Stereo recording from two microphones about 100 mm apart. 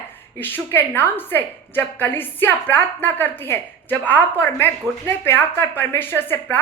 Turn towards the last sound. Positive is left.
turn(degrees=20)  # may be behind; listen again after turning